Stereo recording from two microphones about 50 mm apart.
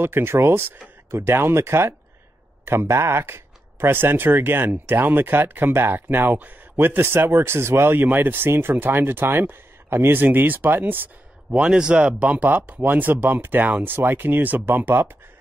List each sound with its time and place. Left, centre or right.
0.0 s speech: right
11.5 s speech: centre; by 15.0 s right